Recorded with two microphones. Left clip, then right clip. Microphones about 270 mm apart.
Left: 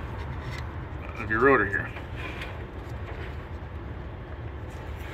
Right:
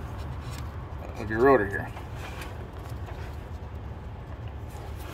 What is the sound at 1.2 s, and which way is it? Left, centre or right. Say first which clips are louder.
Speech: even; centre.